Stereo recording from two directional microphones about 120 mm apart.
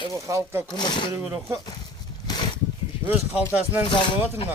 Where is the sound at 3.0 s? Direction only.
15° right (ahead or behind).